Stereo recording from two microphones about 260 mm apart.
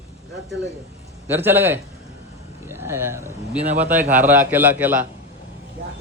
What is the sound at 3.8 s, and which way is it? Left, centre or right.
A man's voice, centre.